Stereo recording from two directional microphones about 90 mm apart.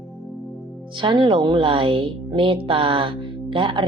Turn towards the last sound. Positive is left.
turn(degrees=-65)  # may be behind; listen again after turning